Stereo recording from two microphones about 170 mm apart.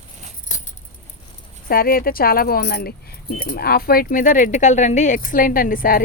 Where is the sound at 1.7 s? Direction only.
60° left (ahead or behind).